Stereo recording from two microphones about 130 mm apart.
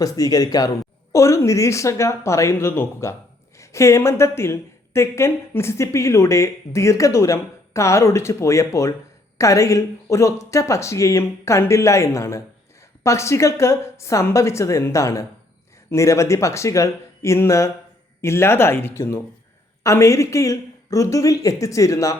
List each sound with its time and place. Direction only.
0.0 s a woman's voice: 30° left (ahead or behind)